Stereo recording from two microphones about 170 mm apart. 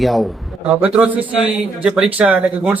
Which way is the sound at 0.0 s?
Centre (ahead or behind).